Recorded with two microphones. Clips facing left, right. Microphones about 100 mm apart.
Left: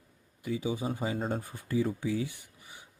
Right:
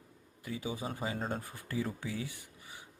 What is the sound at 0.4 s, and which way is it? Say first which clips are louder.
Speech: left 6 dB; 25° left (ahead or behind).